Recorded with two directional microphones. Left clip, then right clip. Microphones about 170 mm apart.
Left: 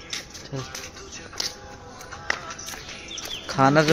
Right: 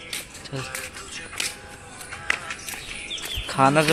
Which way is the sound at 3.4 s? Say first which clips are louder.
Even; 20° left (ahead or behind).